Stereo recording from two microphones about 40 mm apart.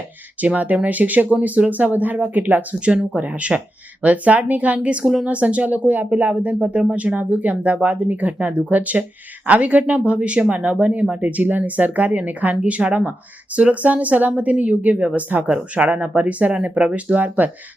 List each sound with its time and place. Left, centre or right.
0.4 s speech: right
2.8 s speech: right
6.3 s speech: right